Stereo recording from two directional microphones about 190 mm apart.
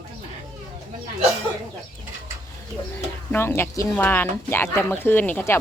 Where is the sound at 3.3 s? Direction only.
10° left (ahead or behind).